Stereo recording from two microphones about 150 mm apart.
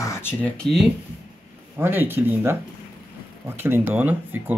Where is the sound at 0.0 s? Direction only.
15° left (ahead or behind).